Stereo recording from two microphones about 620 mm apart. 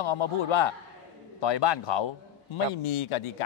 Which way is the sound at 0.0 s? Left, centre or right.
Left.